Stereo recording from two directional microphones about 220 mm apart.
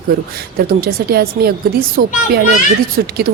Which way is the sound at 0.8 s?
45° right (ahead or behind).